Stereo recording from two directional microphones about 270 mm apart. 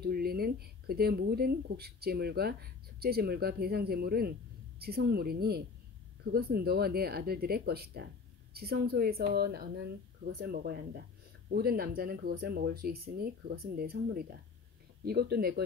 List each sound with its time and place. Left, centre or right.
0.0 s speech: right